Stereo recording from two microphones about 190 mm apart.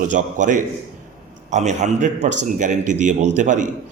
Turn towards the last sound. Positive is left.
turn(degrees=-40)  # may be behind; listen again after turning